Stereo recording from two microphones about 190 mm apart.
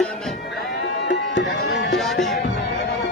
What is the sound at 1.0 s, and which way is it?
Music, 65° left (ahead or behind).